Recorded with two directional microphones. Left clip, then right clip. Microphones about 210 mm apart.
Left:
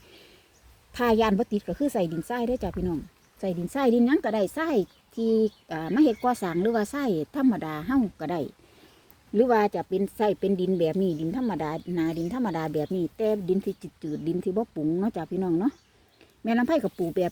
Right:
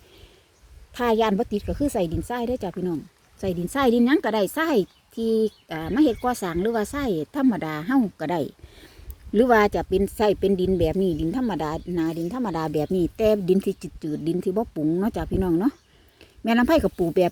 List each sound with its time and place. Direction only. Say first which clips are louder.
0.9 s a woman's voice: right 2 dB; 5° right (ahead or behind); by 17.2 s 25° right (ahead or behind)